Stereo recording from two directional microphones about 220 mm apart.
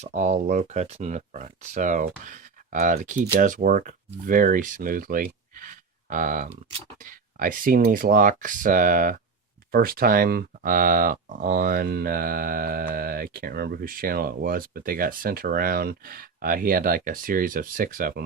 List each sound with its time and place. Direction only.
0.0 s speech: 35° right (ahead or behind)